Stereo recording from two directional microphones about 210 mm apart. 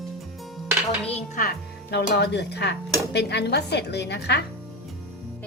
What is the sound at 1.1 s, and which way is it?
Speech, 40° left (ahead or behind).